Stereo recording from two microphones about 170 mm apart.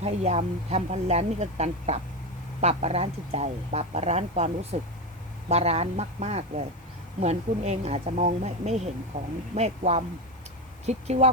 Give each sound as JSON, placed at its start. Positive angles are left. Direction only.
{"t": 0.0, "sound": "speech", "side_deg": -40}